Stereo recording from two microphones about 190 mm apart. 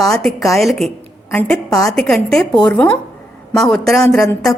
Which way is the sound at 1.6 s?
20° left (ahead or behind).